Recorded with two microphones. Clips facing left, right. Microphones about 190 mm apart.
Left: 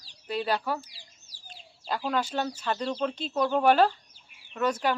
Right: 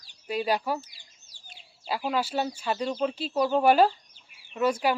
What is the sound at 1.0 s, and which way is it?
Bird, 35° left (ahead or behind).